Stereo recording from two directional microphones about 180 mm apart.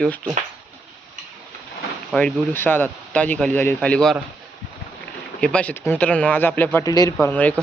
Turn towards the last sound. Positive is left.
turn(degrees=10)  # may be behind; listen again after turning